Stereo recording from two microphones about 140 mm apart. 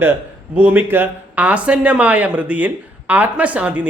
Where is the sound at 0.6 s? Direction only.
15° right (ahead or behind).